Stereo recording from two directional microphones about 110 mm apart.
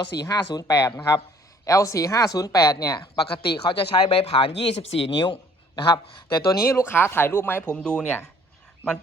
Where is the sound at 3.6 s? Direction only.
60° left (ahead or behind).